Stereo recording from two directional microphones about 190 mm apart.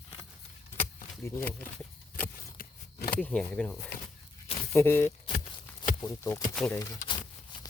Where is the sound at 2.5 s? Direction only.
50° left (ahead or behind).